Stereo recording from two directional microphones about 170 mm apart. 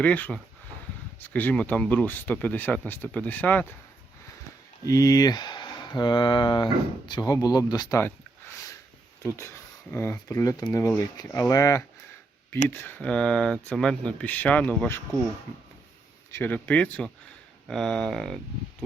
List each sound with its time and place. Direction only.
0.0 s speech: 10° left (ahead or behind)
4.9 s speech: 20° left (ahead or behind)
9.9 s speech: 15° left (ahead or behind)
16.3 s speech: 10° left (ahead or behind)